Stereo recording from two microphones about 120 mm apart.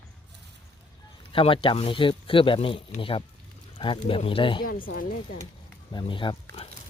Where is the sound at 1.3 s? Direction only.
50° left (ahead or behind).